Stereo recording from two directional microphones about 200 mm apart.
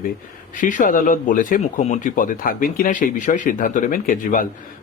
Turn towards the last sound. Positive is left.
turn(degrees=45)  # may be behind; listen again after turning